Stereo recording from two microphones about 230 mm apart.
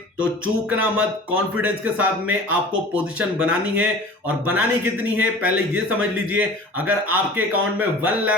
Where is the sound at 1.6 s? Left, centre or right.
Centre.